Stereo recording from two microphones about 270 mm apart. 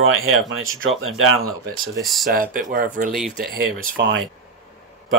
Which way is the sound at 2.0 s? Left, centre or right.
Centre.